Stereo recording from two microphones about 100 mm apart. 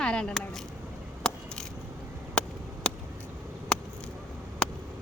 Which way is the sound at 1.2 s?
5° left (ahead or behind).